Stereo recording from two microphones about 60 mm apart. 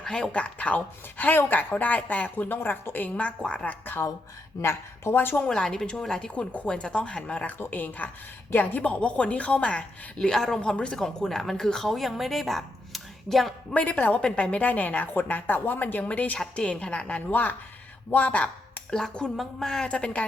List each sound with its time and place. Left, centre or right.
0.0 s a woman's voice: centre; by 3.1 s left
3.2 s a woman's voice: centre
4.6 s a woman's voice: left
5.4 s a woman's voice: centre
6.3 s a woman's voice: left
7.6 s a woman's voice: left; by 10.6 s centre
10.6 s a woman's voice: centre
13.7 s a woman's voice: left
18.9 s a woman's voice: centre
19.9 s a woman's voice: centre